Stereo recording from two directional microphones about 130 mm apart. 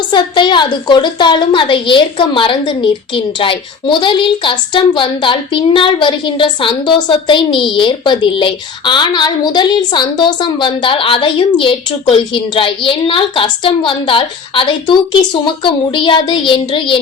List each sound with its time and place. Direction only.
0.1 s a woman's voice: 35° left (ahead or behind)